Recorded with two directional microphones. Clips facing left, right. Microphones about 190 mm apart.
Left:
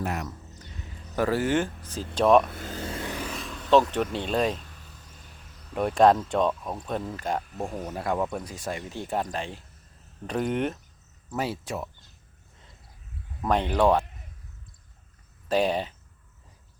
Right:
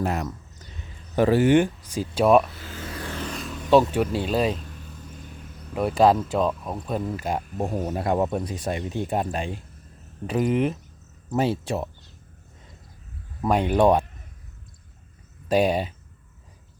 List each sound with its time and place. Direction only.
0.0 s speech: 35° right (ahead or behind)
1.1 s speech: 20° right (ahead or behind)
2.5 s speech: 50° left (ahead or behind)
2.7 s vehicle: 25° left (ahead or behind)
3.2 s vehicle: 5° left (ahead or behind)
3.6 s a sound: 10° right (ahead or behind)
3.9 s speech: 10° right (ahead or behind)
5.7 s speech: centre (ahead or behind)
7.7 s speech: 40° right (ahead or behind)
7.9 s speech: 25° right (ahead or behind); by 10.8 s centre (ahead or behind)
11.3 s speech: 25° right (ahead or behind)
13.4 s speech: 10° right (ahead or behind)
15.4 s speech: 15° right (ahead or behind)